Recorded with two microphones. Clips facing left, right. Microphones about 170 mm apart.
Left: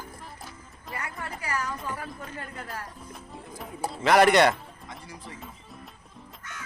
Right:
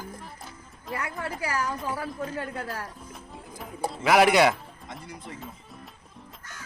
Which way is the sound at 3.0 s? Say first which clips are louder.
Left 1 dB; centre (ahead or behind).